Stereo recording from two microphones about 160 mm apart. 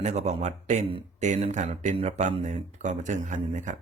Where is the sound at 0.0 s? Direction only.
45° right (ahead or behind).